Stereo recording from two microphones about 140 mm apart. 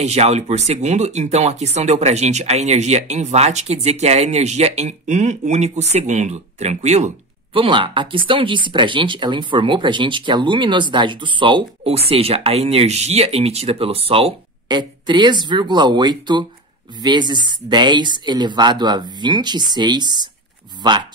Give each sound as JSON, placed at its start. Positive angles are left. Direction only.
{"t": 0.0, "sound": "speech", "side_deg": -50}
{"t": 7.5, "sound": "speech", "side_deg": -40}